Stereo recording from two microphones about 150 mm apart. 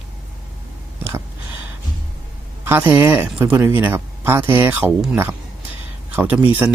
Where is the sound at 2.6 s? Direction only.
15° right (ahead or behind).